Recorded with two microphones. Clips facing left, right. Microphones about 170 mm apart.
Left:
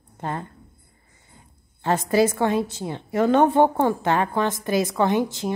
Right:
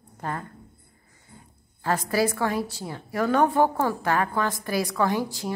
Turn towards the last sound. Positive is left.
turn(degrees=20)  # may be behind; listen again after turning